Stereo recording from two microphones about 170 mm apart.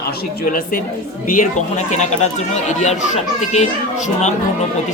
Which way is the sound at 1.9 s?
45° left (ahead or behind).